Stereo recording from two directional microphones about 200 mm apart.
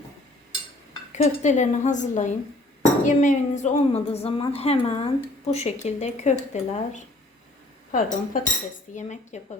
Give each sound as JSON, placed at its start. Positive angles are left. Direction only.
{"t": 1.1, "sound": "a woman's voice", "side_deg": 35}